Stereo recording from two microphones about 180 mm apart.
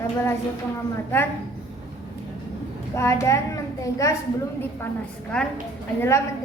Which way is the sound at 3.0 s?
15° left (ahead or behind).